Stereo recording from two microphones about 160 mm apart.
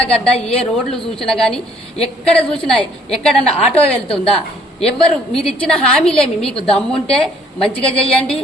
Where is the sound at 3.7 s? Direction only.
35° left (ahead or behind).